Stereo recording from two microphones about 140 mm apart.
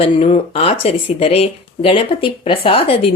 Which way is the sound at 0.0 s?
40° left (ahead or behind).